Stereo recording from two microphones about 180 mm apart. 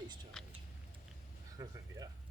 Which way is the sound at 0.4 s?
5° left (ahead or behind).